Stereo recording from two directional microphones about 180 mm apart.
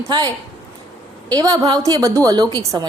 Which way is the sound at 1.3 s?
20° right (ahead or behind).